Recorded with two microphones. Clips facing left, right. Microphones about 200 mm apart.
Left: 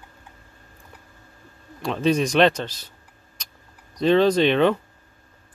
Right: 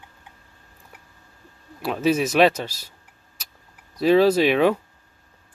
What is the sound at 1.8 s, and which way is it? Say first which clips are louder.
Speech: even; 5° right (ahead or behind).